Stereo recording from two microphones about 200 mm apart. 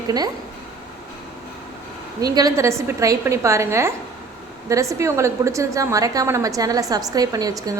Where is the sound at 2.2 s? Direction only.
20° right (ahead or behind).